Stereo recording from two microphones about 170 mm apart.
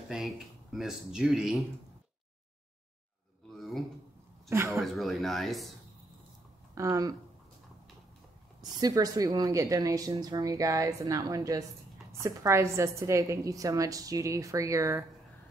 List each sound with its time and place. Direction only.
0.1 s speech: centre (ahead or behind)
3.5 s a sound: centre (ahead or behind)
4.5 s speech: 15° right (ahead or behind)
4.7 s speech: centre (ahead or behind)
6.7 s speech: 20° right (ahead or behind)
8.5 s a woman's voice: 25° right (ahead or behind)